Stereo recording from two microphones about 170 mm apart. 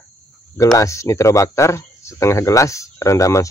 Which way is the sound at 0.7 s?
20° left (ahead or behind).